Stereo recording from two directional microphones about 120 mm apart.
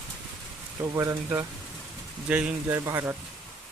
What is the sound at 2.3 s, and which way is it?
Speech, 10° right (ahead or behind).